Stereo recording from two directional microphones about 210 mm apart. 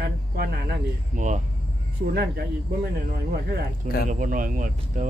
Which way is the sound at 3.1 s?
45° right (ahead or behind).